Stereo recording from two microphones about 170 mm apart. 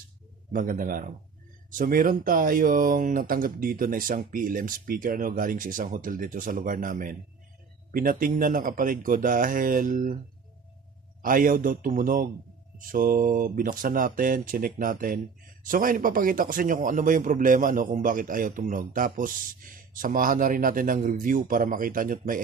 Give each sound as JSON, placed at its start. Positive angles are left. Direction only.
{"t": 0.5, "sound": "a man's voice", "side_deg": -55}
{"t": 11.2, "sound": "a man's voice", "side_deg": -55}